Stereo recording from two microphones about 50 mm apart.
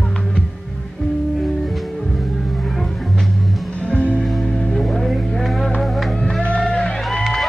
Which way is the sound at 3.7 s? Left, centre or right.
Left.